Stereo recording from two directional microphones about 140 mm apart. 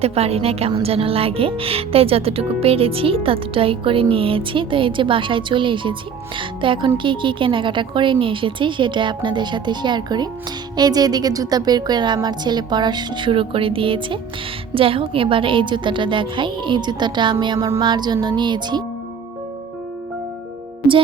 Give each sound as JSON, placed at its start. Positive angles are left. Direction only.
{"t": 0.0, "sound": "a woman's voice", "side_deg": -45}